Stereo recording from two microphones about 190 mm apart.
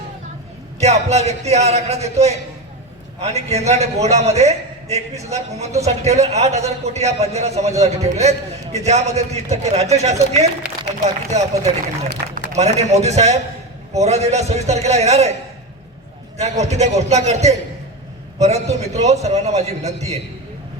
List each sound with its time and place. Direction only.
0.8 s a man's voice: 35° right (ahead or behind)
16.4 s a man's voice: 35° right (ahead or behind)